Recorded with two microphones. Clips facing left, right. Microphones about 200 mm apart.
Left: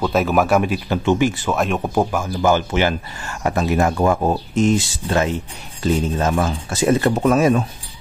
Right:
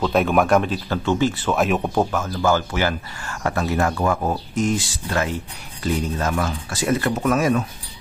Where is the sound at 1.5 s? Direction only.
Centre (ahead or behind); by 7.6 s 25° left (ahead or behind).